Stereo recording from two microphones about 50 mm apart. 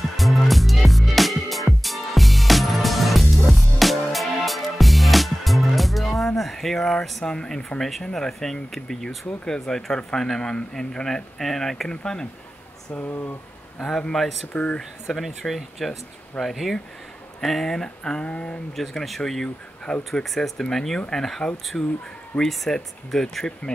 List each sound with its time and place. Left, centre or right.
0.2 s music: centre
8.0 s speech: centre
12.9 s speech: left
13.7 s speech: centre
14.5 s a sound: left
15.0 s speech: centre
17.8 s a sound: centre
18.8 s speech: centre
21.7 s a sound: left
22.4 s speech: centre